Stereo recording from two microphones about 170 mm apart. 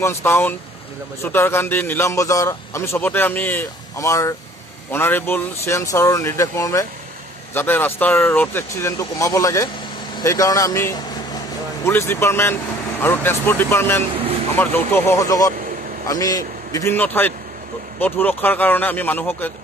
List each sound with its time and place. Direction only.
0.0 s a man's voice: 15° left (ahead or behind)